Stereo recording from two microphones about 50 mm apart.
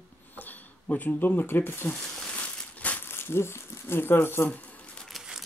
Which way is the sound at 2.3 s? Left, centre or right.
Left.